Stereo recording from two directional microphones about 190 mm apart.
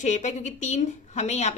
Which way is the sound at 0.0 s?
40° left (ahead or behind).